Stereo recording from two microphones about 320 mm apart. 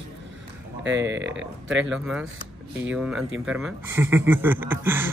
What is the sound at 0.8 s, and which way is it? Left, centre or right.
Speech, right.